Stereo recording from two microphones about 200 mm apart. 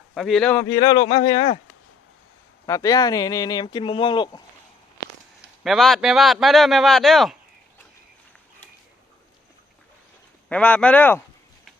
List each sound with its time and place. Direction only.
0.1 s a man's voice: centre (ahead or behind)
0.6 s speech: 15° left (ahead or behind)
2.6 s speech: 15° left (ahead or behind)
5.4 s a man's voice: centre (ahead or behind)
10.5 s speech: 5° left (ahead or behind)